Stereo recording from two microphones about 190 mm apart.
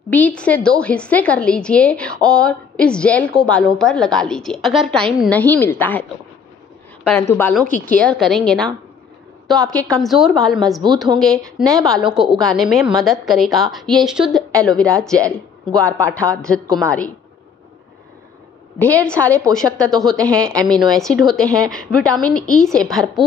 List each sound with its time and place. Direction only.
0.1 s a woman's voice: 5° left (ahead or behind)
7.1 s a woman's voice: 15° left (ahead or behind)
11.6 s a woman's voice: 20° right (ahead or behind)
11.9 s a woman's voice: centre (ahead or behind)
18.8 s a woman's voice: 10° left (ahead or behind)